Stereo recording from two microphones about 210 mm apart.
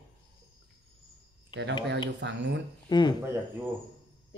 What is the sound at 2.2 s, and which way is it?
Speech, 55° right (ahead or behind).